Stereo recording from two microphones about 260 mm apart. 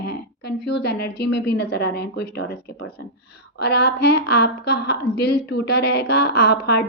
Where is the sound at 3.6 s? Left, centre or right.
Left.